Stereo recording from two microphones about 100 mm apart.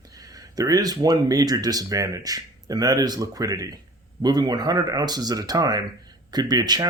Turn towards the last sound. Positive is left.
turn(degrees=-40)  # may be behind; listen again after turning